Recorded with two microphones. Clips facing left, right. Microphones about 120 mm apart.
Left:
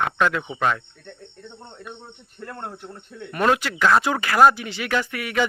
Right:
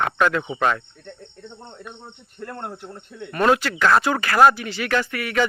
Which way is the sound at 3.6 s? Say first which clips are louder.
Right 1 dB; 15° left (ahead or behind).